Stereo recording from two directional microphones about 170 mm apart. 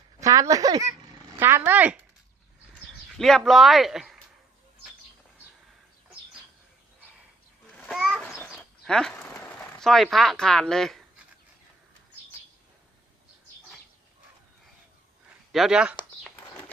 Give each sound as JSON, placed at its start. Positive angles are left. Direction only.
{"t": 0.2, "sound": "speech", "side_deg": -20}
{"t": 3.2, "sound": "a man's voice", "side_deg": 0}
{"t": 7.9, "sound": "a sound", "side_deg": -5}
{"t": 15.5, "sound": "a man's voice", "side_deg": -5}